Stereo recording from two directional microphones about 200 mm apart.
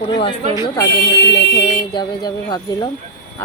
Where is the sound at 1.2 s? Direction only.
55° left (ahead or behind).